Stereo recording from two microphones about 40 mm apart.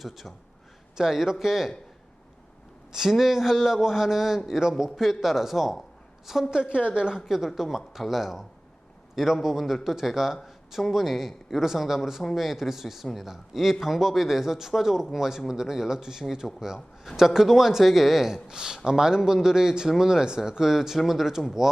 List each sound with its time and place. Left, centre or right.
0.0 s a man's voice: centre
2.9 s a man's voice: centre
6.5 s a woman's voice: right
7.3 s a man's voice: centre
10.4 s a sound: centre
10.9 s a man's voice: centre